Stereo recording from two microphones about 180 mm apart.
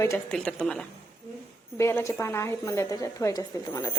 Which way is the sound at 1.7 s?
15° left (ahead or behind).